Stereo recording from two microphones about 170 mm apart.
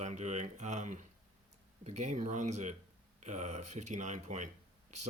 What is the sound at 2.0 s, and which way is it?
Speech, 45° right (ahead or behind).